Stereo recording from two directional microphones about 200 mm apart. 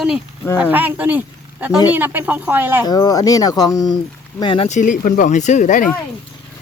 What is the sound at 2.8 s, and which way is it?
Speech, 20° left (ahead or behind).